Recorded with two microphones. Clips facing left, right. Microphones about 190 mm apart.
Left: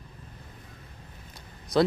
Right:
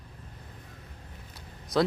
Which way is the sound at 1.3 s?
Centre (ahead or behind).